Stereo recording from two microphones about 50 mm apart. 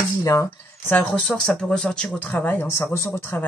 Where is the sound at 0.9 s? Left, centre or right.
Left.